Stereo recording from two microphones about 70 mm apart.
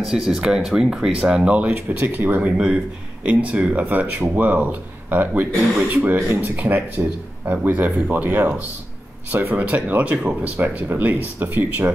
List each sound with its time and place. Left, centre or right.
0.0 s speech: centre; by 6.5 s right
6.5 s speech: right